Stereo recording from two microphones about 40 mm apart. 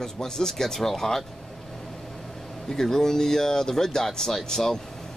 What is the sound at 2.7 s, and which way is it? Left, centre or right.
Speech, centre.